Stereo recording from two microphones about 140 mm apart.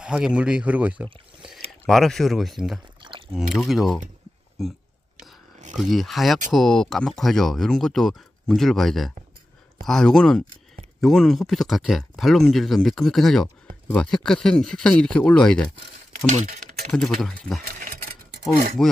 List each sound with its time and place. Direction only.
0.0 s speech: 5° right (ahead or behind)
1.9 s speech: centre (ahead or behind)
3.0 s a sound: 35° right (ahead or behind)
3.3 s speech: centre (ahead or behind)
16.3 s typing: 55° right (ahead or behind)
16.9 s speech: 5° left (ahead or behind)
18.8 s speech: centre (ahead or behind)